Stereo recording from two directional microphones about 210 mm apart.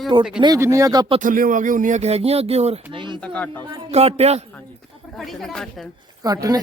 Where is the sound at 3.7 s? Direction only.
30° right (ahead or behind).